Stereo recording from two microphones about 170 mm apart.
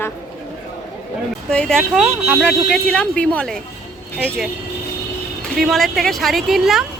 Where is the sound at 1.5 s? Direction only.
5° left (ahead or behind).